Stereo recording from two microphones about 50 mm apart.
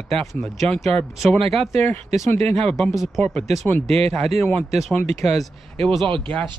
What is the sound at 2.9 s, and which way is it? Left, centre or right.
Speech, centre.